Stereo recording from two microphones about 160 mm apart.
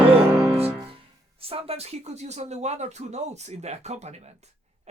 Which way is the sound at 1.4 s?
35° right (ahead or behind).